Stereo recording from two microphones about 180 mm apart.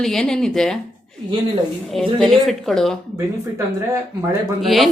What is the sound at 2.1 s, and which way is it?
Speech, centre (ahead or behind).